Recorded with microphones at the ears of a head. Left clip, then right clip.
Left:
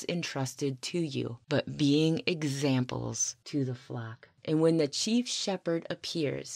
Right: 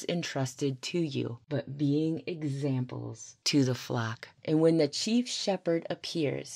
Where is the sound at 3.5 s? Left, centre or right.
Right.